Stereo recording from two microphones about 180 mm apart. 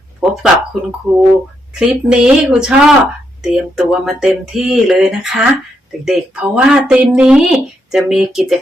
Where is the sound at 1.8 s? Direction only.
5° right (ahead or behind).